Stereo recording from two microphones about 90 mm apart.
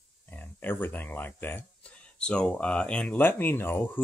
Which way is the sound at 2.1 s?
10° left (ahead or behind).